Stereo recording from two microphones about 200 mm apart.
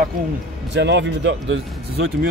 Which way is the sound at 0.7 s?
60° right (ahead or behind).